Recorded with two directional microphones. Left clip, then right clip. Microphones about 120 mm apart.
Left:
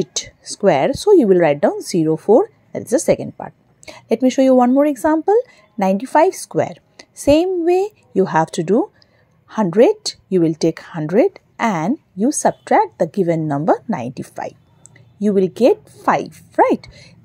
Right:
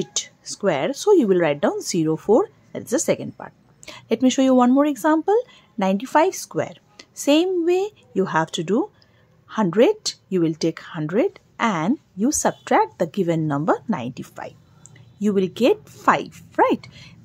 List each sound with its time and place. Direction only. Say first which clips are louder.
0.0 s speech: left 4 dB; 25° left (ahead or behind)
0.9 s speech: left 5 dB; 15° left (ahead or behind)
6.6 s whispering: left 8 dB; 30° left (ahead or behind)
7.2 s speech: left 4 dB; 20° left (ahead or behind)
12.2 s a woman's voice: left 6 dB; 15° left (ahead or behind)
15.1 s a woman's voice: left 5 dB; 15° left (ahead or behind)